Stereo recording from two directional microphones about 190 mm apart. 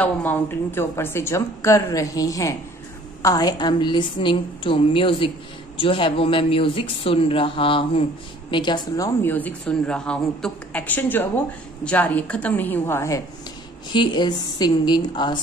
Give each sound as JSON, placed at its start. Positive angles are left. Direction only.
{"t": 0.0, "sound": "a woman's voice", "side_deg": 10}